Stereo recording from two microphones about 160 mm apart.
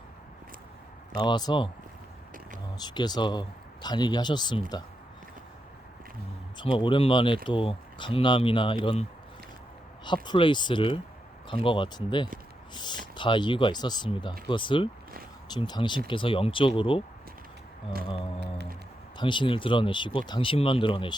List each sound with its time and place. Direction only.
1.2 s speech: 25° left (ahead or behind)
2.7 s speech: 25° left (ahead or behind)
6.6 s speech: 30° left (ahead or behind)
10.2 s speech: 30° left (ahead or behind)
19.1 s speech: 30° left (ahead or behind)